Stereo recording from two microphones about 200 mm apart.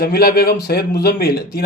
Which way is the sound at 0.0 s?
50° left (ahead or behind).